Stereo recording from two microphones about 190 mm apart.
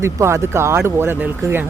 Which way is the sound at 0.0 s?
15° right (ahead or behind).